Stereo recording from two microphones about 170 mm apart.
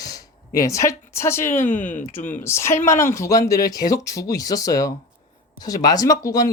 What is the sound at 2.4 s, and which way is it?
Speech, 15° left (ahead or behind).